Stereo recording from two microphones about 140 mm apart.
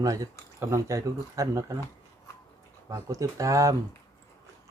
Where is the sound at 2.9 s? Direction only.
25° right (ahead or behind).